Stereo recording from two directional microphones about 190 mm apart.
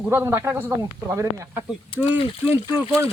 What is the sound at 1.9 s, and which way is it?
Speech, 30° left (ahead or behind).